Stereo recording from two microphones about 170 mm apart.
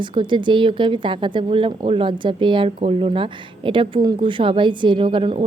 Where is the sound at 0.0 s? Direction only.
30° right (ahead or behind).